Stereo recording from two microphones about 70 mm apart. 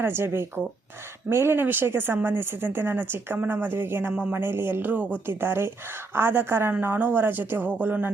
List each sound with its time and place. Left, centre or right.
0.0 s speech: right